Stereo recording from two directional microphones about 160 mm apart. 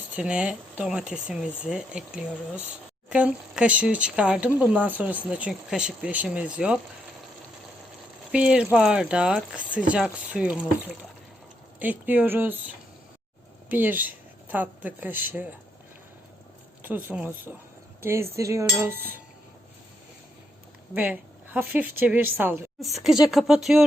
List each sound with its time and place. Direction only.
0.2 s speech: 5° right (ahead or behind)
8.3 s speech: 5° right (ahead or behind)
16.8 s speech: 10° right (ahead or behind)
20.9 s speech: 10° right (ahead or behind)
22.8 s speech: centre (ahead or behind)